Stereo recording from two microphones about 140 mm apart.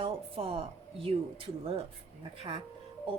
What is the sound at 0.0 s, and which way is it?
Speech, 40° right (ahead or behind).